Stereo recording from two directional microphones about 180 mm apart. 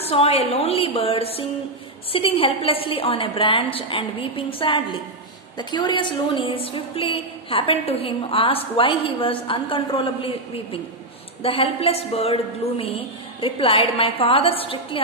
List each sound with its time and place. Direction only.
0.0 s a woman's voice: 35° left (ahead or behind)